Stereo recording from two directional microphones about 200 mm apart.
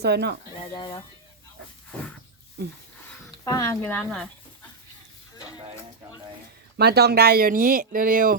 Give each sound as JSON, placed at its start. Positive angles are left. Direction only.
{"t": 0.0, "sound": "speech", "side_deg": -55}
{"t": 0.6, "sound": "speech", "side_deg": 25}
{"t": 2.6, "sound": "speech", "side_deg": -50}
{"t": 3.4, "sound": "speech", "side_deg": 15}
{"t": 6.7, "sound": "speech", "side_deg": -55}